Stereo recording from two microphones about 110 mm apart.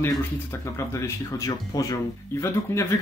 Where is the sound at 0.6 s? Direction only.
25° left (ahead or behind).